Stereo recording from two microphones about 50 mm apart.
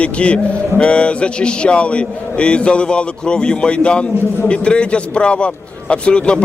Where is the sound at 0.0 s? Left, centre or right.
Left.